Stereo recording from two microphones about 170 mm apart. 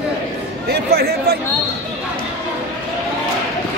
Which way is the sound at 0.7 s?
70° right (ahead or behind).